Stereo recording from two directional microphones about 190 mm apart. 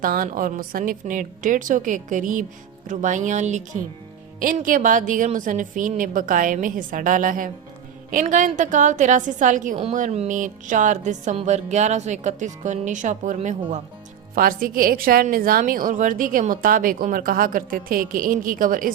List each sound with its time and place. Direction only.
0.0 s a woman's voice: 45° right (ahead or behind)
14.3 s a woman's voice: 50° right (ahead or behind)